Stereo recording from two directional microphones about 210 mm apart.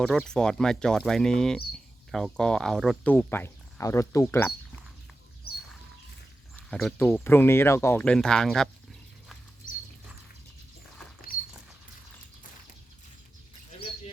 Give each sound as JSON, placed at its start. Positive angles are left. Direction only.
{"t": 0.0, "sound": "speech", "side_deg": 5}
{"t": 5.5, "sound": "a sound", "side_deg": 50}
{"t": 6.7, "sound": "speech", "side_deg": 0}